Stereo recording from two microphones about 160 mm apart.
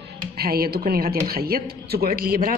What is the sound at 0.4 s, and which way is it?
A man's voice, 70° right (ahead or behind).